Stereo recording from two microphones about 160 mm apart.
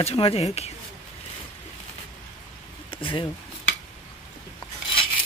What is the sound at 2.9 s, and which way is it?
Speech, 35° left (ahead or behind).